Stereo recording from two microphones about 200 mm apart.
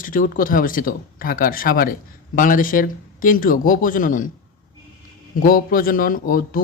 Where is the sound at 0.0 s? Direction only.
45° left (ahead or behind).